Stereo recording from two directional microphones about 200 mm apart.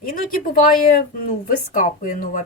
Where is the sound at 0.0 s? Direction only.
45° left (ahead or behind).